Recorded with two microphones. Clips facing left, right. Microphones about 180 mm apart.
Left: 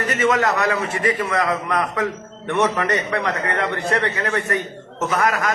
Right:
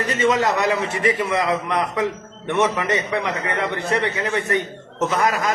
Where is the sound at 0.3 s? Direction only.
20° right (ahead or behind).